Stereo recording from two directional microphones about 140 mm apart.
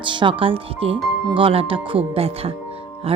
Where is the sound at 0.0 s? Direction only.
35° right (ahead or behind).